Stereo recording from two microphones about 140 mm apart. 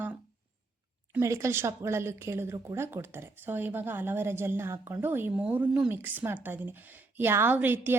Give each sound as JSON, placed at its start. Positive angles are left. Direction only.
{"t": 1.2, "sound": "a woman's voice", "side_deg": -20}